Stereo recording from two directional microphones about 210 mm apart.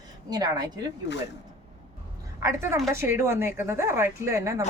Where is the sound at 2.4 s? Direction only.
15° right (ahead or behind).